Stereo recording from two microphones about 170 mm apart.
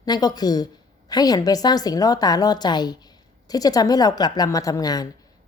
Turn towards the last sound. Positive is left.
turn(degrees=20)  # may be behind; listen again after turning